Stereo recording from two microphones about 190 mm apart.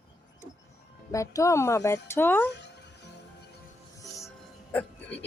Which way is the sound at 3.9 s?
15° left (ahead or behind).